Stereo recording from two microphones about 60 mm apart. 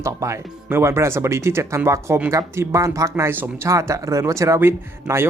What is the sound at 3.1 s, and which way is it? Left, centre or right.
Speech, right.